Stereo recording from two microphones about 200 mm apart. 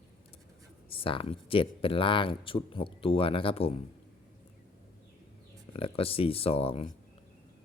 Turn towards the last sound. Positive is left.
turn(degrees=30)  # may be behind; listen again after turning